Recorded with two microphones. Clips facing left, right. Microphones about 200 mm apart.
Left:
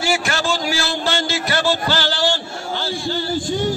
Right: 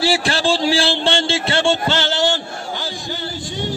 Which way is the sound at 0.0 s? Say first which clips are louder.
Right 3 dB; 30° right (ahead or behind).